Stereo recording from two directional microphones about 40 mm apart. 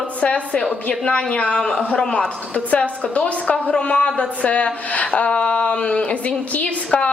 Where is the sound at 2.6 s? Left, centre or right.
Left.